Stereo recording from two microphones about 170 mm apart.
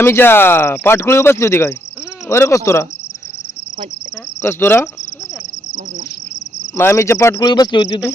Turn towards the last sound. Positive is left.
turn(degrees=25)  # may be behind; listen again after turning